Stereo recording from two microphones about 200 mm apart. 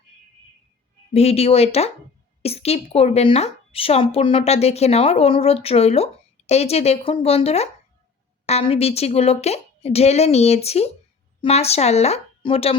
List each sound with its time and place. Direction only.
1.1 s a woman's voice: 30° left (ahead or behind)